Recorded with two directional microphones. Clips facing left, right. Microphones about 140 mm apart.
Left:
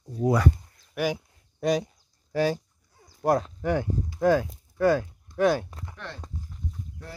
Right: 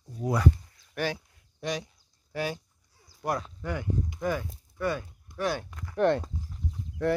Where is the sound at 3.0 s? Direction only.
50° left (ahead or behind).